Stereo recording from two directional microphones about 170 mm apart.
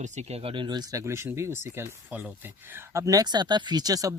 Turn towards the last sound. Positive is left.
turn(degrees=-20)  # may be behind; listen again after turning